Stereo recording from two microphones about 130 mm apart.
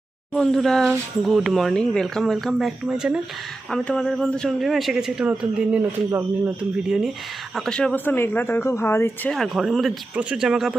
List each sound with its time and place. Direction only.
0.3 s speech: 5° left (ahead or behind)
3.7 s speech: 5° left (ahead or behind)
6.1 s speech: 20° right (ahead or behind)
6.8 s speech: 5° right (ahead or behind); by 9.3 s 20° left (ahead or behind)
9.3 s speech: centre (ahead or behind)